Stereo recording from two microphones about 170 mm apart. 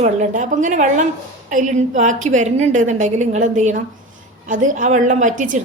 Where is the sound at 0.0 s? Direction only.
45° right (ahead or behind).